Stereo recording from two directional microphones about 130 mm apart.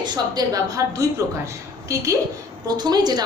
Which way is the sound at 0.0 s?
30° right (ahead or behind).